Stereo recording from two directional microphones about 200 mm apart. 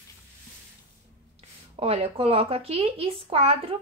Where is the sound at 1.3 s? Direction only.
30° right (ahead or behind).